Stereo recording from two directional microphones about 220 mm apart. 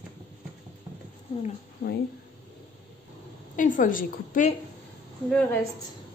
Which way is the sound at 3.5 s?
35° left (ahead or behind).